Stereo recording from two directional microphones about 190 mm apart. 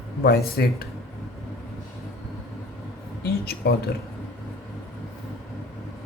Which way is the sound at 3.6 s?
55° left (ahead or behind).